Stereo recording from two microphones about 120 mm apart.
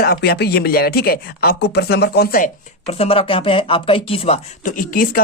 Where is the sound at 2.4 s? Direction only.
55° left (ahead or behind).